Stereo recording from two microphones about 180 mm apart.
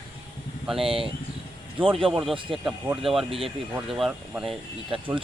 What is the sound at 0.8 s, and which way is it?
Speech, 30° right (ahead or behind).